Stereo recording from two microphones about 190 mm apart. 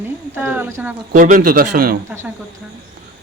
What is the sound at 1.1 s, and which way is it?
Speech, 45° right (ahead or behind).